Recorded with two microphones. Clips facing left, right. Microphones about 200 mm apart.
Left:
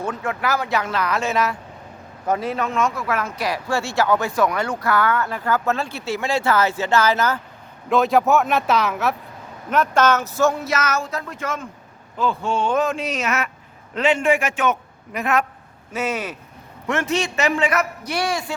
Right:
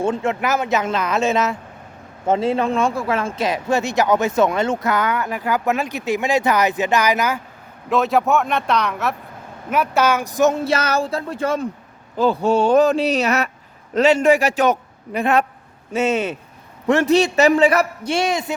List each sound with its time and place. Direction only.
0.0 s speech: 25° right (ahead or behind)
7.9 s a man's voice: centre (ahead or behind)
9.6 s a man's voice: 10° right (ahead or behind)